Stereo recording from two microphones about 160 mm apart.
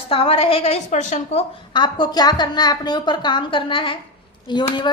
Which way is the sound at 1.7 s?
30° left (ahead or behind).